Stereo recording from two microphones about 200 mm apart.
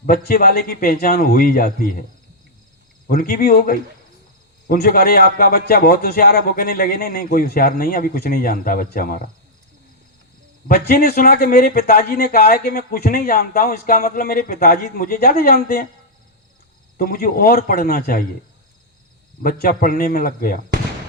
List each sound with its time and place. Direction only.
0.0 s speech: 50° left (ahead or behind)
3.1 s speech: 50° left (ahead or behind)
10.7 s speech: 50° left (ahead or behind)
17.0 s speech: 45° left (ahead or behind)
19.4 s speech: 50° left (ahead or behind)